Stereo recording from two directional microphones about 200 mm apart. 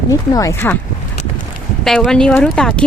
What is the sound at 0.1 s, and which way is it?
Speech, 15° left (ahead or behind).